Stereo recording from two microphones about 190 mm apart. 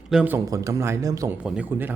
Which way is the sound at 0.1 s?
5° right (ahead or behind).